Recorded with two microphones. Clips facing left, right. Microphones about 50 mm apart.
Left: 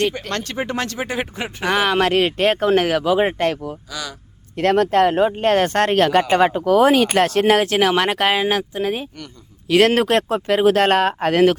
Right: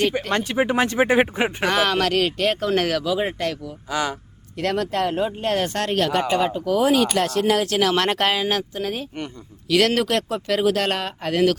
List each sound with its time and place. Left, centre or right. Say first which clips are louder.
0.1 s speech: right 3 dB; centre
1.6 s speech: left 3 dB; centre
2.0 s speech: left 4 dB; left
2.7 s speech: left 4 dB; left
3.0 s speech: left 6 dB; left
7.7 s speech: left 3 dB; left
7.9 s speech: left 3 dB; centre
9.6 s speech: left 4 dB; left